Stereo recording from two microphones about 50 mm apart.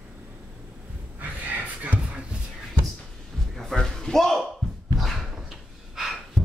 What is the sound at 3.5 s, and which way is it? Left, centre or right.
Music, centre.